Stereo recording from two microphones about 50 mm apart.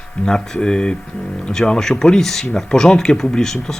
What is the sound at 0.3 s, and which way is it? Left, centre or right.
Speech, centre.